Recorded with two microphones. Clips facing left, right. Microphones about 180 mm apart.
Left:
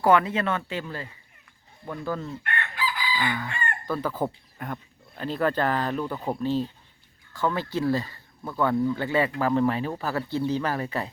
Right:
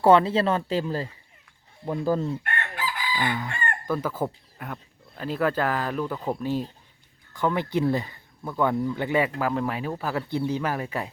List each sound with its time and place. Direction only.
0.0 s speech: 30° right (ahead or behind)
2.4 s chicken: 45° right (ahead or behind)
3.3 s speech: 15° right (ahead or behind); by 6.3 s 5° left (ahead or behind)
6.4 s speech: 10° right (ahead or behind)
9.4 s speech: 5° right (ahead or behind)